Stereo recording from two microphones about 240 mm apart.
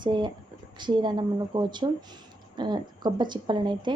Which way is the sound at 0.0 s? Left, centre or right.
Centre.